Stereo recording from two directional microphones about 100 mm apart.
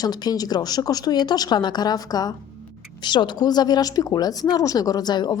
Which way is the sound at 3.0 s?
50° left (ahead or behind).